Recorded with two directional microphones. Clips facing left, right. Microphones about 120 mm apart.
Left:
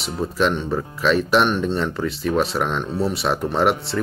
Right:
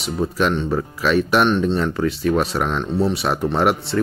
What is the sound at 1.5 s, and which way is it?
A man's voice, 10° left (ahead or behind).